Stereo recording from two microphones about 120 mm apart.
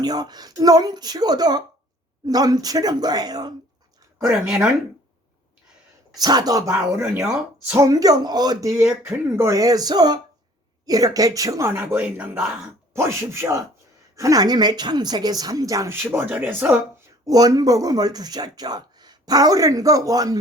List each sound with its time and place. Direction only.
0.0 s speech: 35° right (ahead or behind)
4.3 s speech: 5° right (ahead or behind)
6.1 s speech: 35° right (ahead or behind)
6.7 s speech: 10° right (ahead or behind)
7.8 s speech: 30° right (ahead or behind)
8.7 s speech: 20° right (ahead or behind)
12.9 s speech: 25° right (ahead or behind)
16.0 s speech: 15° right (ahead or behind)
17.2 s speech: 30° right (ahead or behind)